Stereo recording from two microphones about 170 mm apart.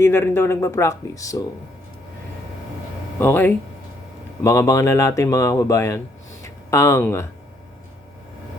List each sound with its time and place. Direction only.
0.0 s speech: 15° left (ahead or behind)
3.2 s speech: 15° left (ahead or behind)